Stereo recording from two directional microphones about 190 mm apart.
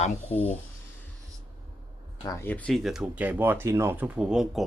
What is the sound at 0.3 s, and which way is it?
Speech, 10° left (ahead or behind).